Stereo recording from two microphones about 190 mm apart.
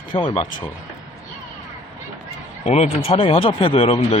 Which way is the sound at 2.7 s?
35° left (ahead or behind).